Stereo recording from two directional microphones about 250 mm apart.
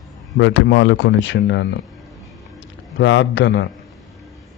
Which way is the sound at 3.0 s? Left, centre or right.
Left.